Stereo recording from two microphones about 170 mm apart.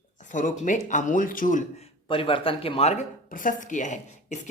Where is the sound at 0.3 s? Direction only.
50° left (ahead or behind).